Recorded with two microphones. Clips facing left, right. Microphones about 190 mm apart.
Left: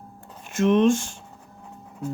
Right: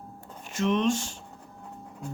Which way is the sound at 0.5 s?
50° left (ahead or behind).